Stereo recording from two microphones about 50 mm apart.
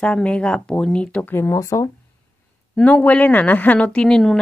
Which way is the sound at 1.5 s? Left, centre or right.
Left.